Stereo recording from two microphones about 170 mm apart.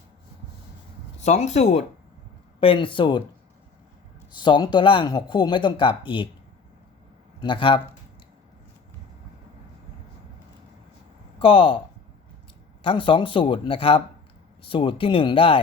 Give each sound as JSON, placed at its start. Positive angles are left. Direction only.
{"t": 1.2, "sound": "speech", "side_deg": 40}
{"t": 4.3, "sound": "speech", "side_deg": 25}
{"t": 7.3, "sound": "speech", "side_deg": 30}
{"t": 11.3, "sound": "speech", "side_deg": 30}
{"t": 12.8, "sound": "speech", "side_deg": 30}